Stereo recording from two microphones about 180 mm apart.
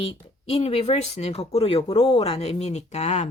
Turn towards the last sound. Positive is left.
turn(degrees=35)  # may be behind; listen again after turning